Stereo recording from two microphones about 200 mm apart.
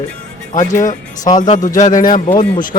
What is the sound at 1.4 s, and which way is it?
Speech, 40° left (ahead or behind).